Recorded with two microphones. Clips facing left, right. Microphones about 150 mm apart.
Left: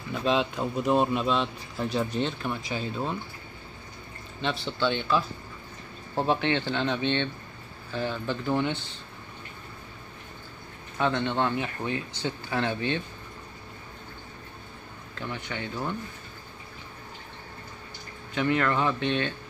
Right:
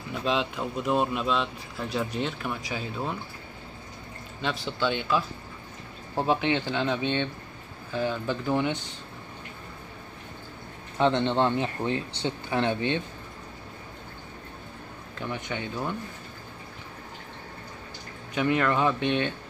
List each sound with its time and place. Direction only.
0.1 s speech: centre (ahead or behind)
4.7 s speech: 10° right (ahead or behind)
11.0 s speech: 25° right (ahead or behind)
15.1 s speech: 20° right (ahead or behind)
18.3 s speech: 15° right (ahead or behind)